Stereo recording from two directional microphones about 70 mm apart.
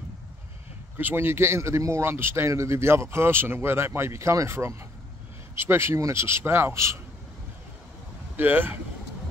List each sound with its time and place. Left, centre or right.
0.9 s speech: right
8.4 s speech: right